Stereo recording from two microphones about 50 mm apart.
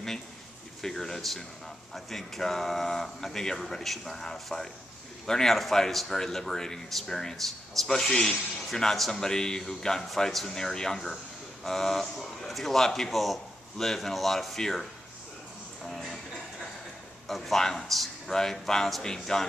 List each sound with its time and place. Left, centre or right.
0.8 s a man's voice: centre
15.9 s speech: centre
17.3 s speech: centre